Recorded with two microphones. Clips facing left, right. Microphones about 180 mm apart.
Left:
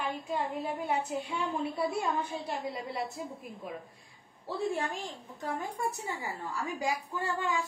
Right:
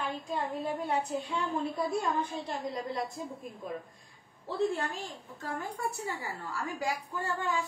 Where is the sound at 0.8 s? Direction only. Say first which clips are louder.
Even; 10° left (ahead or behind).